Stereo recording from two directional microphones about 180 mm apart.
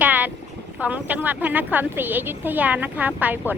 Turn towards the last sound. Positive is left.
turn(degrees=-10)  # may be behind; listen again after turning